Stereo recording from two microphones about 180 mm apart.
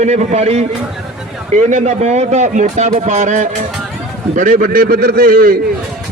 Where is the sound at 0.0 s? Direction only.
35° right (ahead or behind).